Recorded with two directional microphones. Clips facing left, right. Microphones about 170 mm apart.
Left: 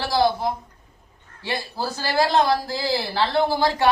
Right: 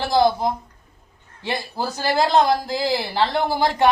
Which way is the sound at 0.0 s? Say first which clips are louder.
Right 3 dB; 20° right (ahead or behind).